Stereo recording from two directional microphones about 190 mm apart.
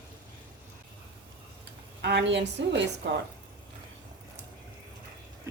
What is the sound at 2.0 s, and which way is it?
A woman's voice, 65° right (ahead or behind).